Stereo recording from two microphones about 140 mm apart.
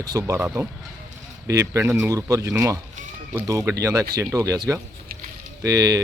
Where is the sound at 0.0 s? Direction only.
25° right (ahead or behind).